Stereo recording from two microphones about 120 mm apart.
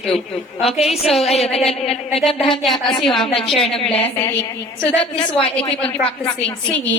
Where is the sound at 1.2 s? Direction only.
60° left (ahead or behind).